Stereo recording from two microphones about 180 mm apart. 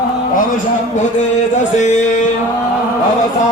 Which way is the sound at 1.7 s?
40° left (ahead or behind).